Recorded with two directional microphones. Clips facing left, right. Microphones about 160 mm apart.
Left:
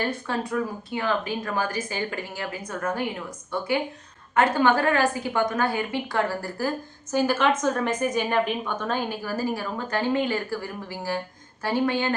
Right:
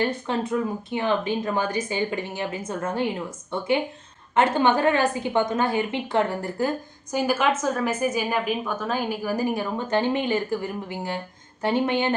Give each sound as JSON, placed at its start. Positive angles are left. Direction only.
{"t": 0.0, "sound": "speech", "side_deg": -20}
{"t": 7.1, "sound": "a woman's voice", "side_deg": -10}